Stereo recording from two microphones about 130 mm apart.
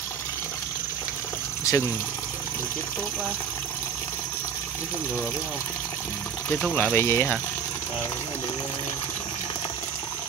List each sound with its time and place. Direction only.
1.6 s water: 25° left (ahead or behind)
6.6 s speech: 15° left (ahead or behind)